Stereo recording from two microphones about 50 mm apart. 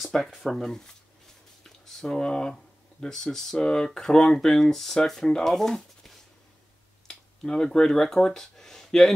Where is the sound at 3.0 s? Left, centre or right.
Centre.